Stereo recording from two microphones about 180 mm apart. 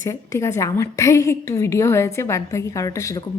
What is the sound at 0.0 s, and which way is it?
A woman's voice, 15° left (ahead or behind).